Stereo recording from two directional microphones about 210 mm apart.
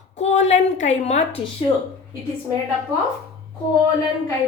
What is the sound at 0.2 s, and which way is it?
A woman's voice, 35° left (ahead or behind).